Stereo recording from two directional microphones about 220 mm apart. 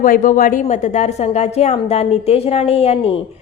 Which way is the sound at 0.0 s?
35° left (ahead or behind).